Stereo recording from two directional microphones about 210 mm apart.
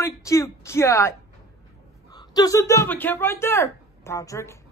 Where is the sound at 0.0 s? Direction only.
15° left (ahead or behind).